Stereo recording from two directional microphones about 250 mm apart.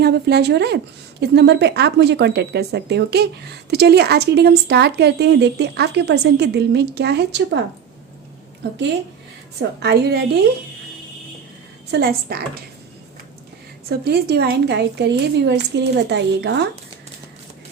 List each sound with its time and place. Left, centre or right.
0.0 s speech: right
9.6 s speech: right
11.9 s speech: right
14.0 s a woman's voice: right